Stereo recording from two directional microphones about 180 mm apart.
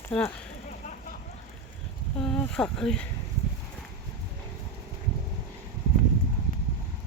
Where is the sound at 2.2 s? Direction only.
5° left (ahead or behind).